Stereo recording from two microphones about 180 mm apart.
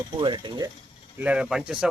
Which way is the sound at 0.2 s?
25° right (ahead or behind).